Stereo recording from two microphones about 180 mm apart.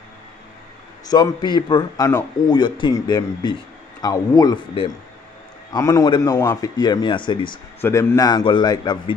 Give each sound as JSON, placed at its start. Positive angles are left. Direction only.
{"t": 1.1, "sound": "a man's voice", "side_deg": 25}
{"t": 7.8, "sound": "a man's voice", "side_deg": 15}